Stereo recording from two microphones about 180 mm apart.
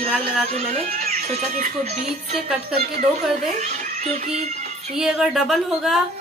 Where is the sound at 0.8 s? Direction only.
50° right (ahead or behind).